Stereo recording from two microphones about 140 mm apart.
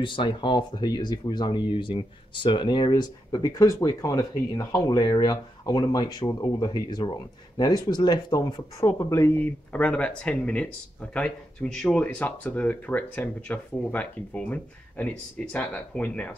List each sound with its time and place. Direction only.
0.0 s speech: 35° left (ahead or behind); by 16.3 s 10° left (ahead or behind)